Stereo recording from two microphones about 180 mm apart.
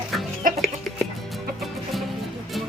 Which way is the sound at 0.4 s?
50° right (ahead or behind).